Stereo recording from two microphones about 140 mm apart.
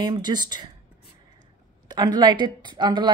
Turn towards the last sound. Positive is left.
turn(degrees=-35)  # may be behind; listen again after turning